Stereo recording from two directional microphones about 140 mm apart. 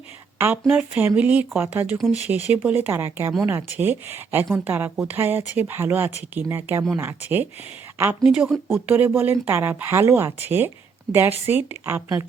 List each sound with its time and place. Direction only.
0.3 s speech: 15° right (ahead or behind)